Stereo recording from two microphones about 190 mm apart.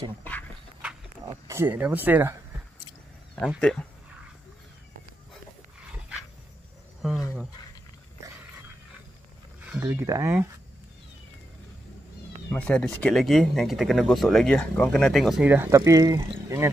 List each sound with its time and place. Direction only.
0.2 s speech: 10° left (ahead or behind)
1.5 s speech: 10° right (ahead or behind)
3.3 s speech: 5° left (ahead or behind)
7.0 s a sound: centre (ahead or behind)
9.7 s speech: 10° right (ahead or behind)
12.4 s speech: 5° left (ahead or behind); by 16.7 s 15° right (ahead or behind)